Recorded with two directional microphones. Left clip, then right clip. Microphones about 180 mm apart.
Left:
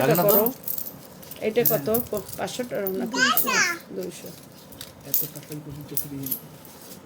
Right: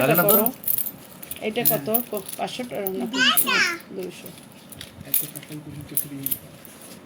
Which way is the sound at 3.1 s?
70° left (ahead or behind).